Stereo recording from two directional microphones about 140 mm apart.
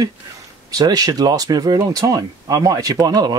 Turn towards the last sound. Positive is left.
turn(degrees=-30)  # may be behind; listen again after turning